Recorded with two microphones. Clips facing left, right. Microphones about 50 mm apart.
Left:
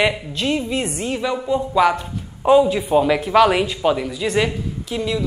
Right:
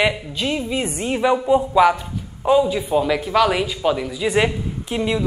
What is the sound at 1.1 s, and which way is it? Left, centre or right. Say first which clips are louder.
Speech: right 6 dB; right.